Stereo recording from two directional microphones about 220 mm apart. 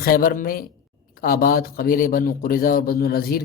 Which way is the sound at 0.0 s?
40° left (ahead or behind).